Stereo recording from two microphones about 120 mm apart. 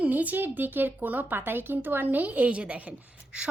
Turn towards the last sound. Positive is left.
turn(degrees=-10)  # may be behind; listen again after turning